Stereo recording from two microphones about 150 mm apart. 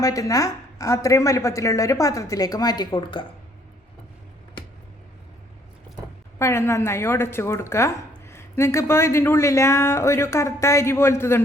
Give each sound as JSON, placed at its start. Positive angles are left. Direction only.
{"t": 0.0, "sound": "a woman's voice", "side_deg": 25}
{"t": 6.4, "sound": "speech", "side_deg": 20}